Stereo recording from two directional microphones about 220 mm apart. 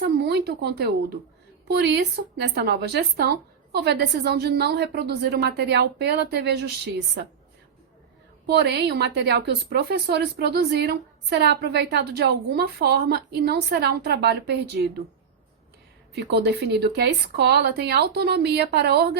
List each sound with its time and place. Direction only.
0.0 s a woman's voice: 50° right (ahead or behind)
8.4 s a woman's voice: 50° right (ahead or behind)
16.1 s a woman's voice: 50° right (ahead or behind)